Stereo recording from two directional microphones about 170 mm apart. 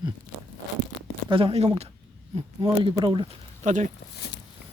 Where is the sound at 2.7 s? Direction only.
25° right (ahead or behind).